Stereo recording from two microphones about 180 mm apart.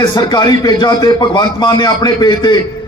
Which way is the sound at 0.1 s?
25° left (ahead or behind).